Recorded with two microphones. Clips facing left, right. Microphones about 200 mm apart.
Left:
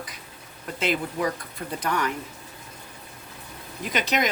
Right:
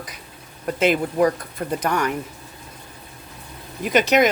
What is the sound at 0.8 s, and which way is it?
Speech, 50° right (ahead or behind).